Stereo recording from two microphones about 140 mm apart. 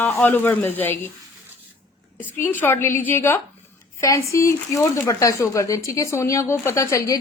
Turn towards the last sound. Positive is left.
turn(degrees=20)  # may be behind; listen again after turning